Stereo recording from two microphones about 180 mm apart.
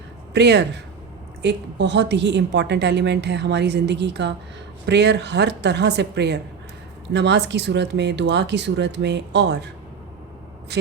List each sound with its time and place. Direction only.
0.3 s a woman's voice: 70° right (ahead or behind)